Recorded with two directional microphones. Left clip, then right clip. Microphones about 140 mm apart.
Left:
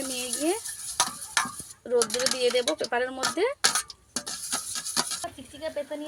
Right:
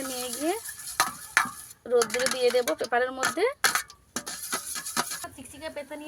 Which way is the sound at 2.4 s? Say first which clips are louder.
Right 1 dB; 25° left (ahead or behind).